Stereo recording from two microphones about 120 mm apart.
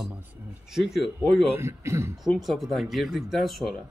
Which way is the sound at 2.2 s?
Centre (ahead or behind).